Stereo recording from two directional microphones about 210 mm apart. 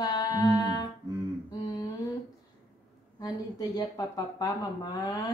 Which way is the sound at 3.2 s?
20° left (ahead or behind).